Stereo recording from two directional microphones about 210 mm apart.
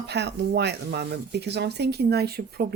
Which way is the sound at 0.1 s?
55° right (ahead or behind).